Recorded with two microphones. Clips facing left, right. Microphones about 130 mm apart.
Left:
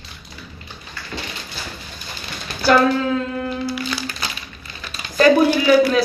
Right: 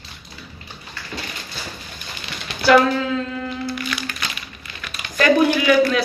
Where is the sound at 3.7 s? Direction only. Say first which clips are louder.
Left 2 dB; 30° left (ahead or behind).